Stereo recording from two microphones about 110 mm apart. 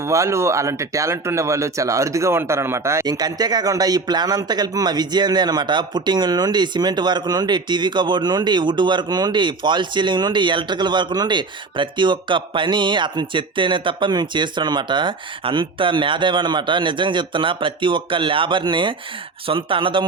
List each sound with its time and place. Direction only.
0.0 s speech: 25° right (ahead or behind)
3.1 s speech: 35° right (ahead or behind)